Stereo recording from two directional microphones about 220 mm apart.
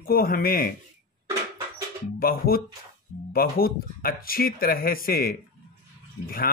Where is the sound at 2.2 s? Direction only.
45° left (ahead or behind).